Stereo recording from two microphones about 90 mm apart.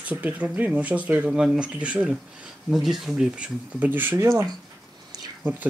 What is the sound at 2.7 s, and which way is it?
Speech, centre (ahead or behind).